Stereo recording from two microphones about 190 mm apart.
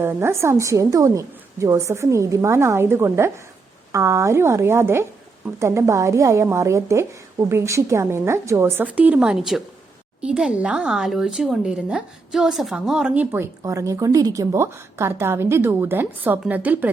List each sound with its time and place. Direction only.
0.0 s speech: 15° right (ahead or behind)